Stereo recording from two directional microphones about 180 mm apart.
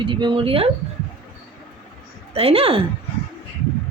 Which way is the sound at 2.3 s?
35° right (ahead or behind).